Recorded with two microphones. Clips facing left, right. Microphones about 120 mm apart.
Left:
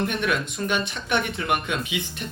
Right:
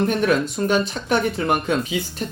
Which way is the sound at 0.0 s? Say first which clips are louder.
Right 6 dB; 35° right (ahead or behind).